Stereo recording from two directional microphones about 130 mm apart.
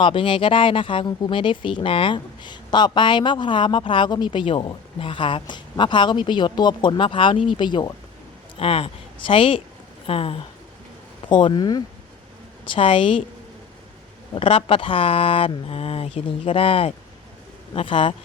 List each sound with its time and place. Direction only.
0.0 s speech: 40° left (ahead or behind)
8.5 s speech: 50° left (ahead or behind)
11.3 s speech: 35° left (ahead or behind)
12.6 s speech: 40° left (ahead or behind)
14.3 s speech: 45° left (ahead or behind)